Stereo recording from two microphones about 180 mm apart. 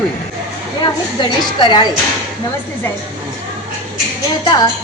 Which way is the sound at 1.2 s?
25° left (ahead or behind).